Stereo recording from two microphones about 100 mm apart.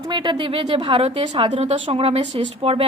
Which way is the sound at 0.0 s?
50° right (ahead or behind).